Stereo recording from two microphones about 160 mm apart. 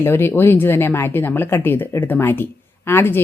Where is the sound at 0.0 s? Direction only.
15° left (ahead or behind).